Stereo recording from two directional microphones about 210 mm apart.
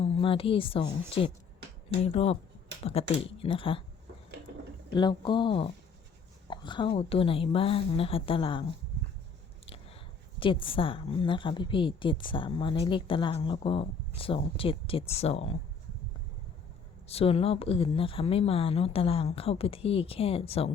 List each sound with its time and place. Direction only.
0.0 s speech: 25° left (ahead or behind)
2.0 s speech: 30° left (ahead or behind)
4.9 s speech: 20° left (ahead or behind)
9.6 s biting: 30° left (ahead or behind)
10.4 s speech: 25° left (ahead or behind)
17.1 s speech: 30° left (ahead or behind)